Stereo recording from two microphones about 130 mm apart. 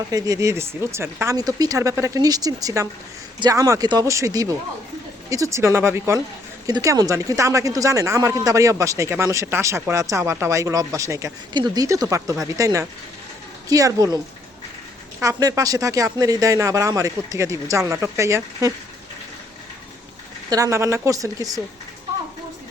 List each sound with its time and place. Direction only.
0.1 s speech: 25° right (ahead or behind)
6.7 s speech: 30° right (ahead or behind)
15.2 s speech: 25° right (ahead or behind)
20.5 s speech: 25° right (ahead or behind)